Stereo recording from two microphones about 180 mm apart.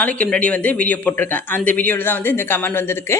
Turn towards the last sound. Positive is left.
turn(degrees=15)  # may be behind; listen again after turning